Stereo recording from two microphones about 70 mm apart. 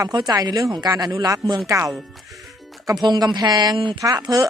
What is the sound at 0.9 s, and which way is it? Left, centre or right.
Speech, right.